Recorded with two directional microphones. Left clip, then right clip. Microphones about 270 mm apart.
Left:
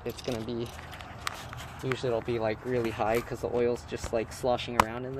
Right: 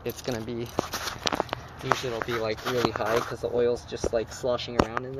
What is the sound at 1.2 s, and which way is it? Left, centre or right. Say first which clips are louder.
Walk: right 8 dB; right.